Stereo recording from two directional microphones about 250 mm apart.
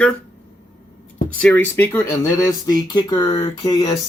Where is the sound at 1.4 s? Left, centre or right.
Centre.